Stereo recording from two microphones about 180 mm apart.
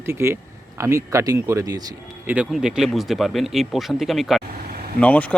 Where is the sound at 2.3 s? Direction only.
5° right (ahead or behind).